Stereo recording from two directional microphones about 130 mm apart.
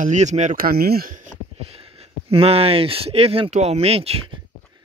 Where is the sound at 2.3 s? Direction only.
50° right (ahead or behind).